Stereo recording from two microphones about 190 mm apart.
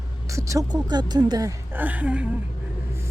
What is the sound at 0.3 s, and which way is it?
Speech, 15° right (ahead or behind).